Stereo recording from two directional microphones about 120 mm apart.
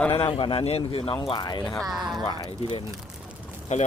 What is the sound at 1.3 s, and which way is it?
Speech, 35° left (ahead or behind).